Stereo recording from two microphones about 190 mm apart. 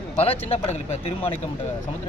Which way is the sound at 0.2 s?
30° left (ahead or behind).